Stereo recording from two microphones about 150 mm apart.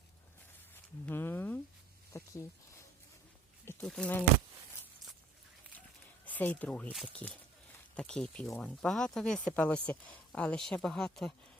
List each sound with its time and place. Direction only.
1.0 s a sound: 15° left (ahead or behind)
3.7 s speech: 5° left (ahead or behind)
6.2 s speech: 10° left (ahead or behind)